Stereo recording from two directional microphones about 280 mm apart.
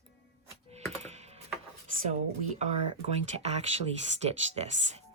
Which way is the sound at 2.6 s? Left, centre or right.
Right.